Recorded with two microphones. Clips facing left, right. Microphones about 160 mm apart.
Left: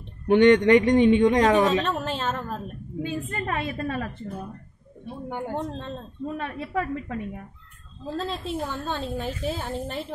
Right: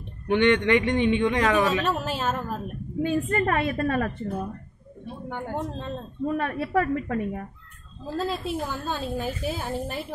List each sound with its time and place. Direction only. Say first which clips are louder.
0.3 s a man's voice: left 4 dB; 40° left (ahead or behind)
1.7 s a woman's voice: left 1 dB; 5° right (ahead or behind)
3.0 s a woman's voice: right 6 dB; 55° right (ahead or behind)
5.5 s a woman's voice: even; 10° right (ahead or behind)
6.2 s a woman's voice: right 5 dB; 60° right (ahead or behind)
8.2 s a woman's voice: right 2 dB; 5° right (ahead or behind)